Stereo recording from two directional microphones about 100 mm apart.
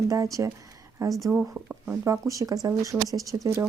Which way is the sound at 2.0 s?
35° right (ahead or behind).